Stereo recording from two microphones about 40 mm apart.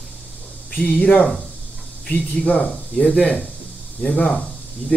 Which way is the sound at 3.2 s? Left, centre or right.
Left.